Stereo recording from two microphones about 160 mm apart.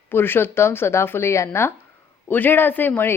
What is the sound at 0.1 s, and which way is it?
Speech, 15° left (ahead or behind).